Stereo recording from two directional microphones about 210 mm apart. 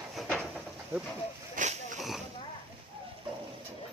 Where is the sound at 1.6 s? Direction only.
40° right (ahead or behind).